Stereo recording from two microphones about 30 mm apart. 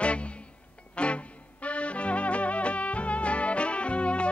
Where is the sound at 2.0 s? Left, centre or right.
Left.